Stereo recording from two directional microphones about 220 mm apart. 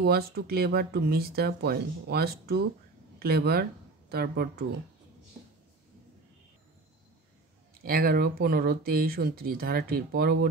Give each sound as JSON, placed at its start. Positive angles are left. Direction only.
{"t": 0.0, "sound": "speech", "side_deg": -45}
{"t": 7.8, "sound": "speech", "side_deg": -45}